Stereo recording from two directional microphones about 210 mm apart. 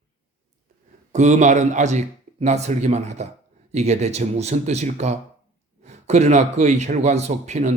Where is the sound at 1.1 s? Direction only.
35° right (ahead or behind).